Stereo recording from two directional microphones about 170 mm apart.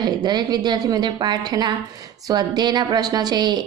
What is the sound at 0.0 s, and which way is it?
A woman's voice, 25° right (ahead or behind).